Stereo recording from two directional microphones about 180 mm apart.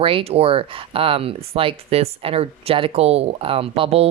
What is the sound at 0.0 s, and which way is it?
Speech, 30° right (ahead or behind).